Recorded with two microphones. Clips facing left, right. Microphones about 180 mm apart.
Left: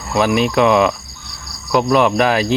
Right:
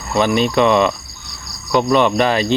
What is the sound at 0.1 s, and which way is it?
Speech, 5° left (ahead or behind).